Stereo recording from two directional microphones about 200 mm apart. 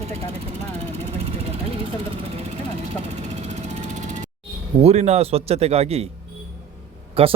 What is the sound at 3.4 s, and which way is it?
Vehicle, 35° right (ahead or behind).